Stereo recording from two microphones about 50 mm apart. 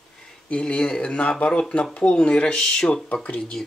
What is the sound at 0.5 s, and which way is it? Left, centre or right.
Speech, left.